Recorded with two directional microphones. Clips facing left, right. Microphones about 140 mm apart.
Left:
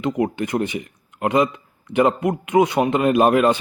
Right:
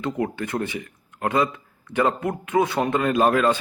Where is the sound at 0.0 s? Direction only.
15° left (ahead or behind).